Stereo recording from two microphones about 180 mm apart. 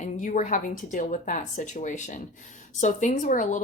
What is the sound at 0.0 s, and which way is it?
Speech, 45° left (ahead or behind).